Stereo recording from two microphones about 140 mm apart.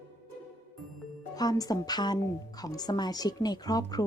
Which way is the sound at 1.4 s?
25° left (ahead or behind).